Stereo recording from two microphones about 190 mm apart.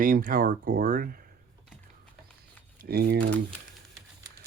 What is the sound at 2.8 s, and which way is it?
Speech, 55° right (ahead or behind).